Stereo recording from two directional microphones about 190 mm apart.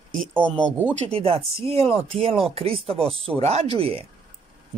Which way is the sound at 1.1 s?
30° right (ahead or behind).